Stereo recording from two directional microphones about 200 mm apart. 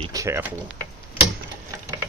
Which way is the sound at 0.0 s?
15° right (ahead or behind).